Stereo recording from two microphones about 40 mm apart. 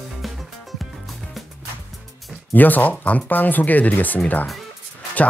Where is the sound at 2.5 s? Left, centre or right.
Left.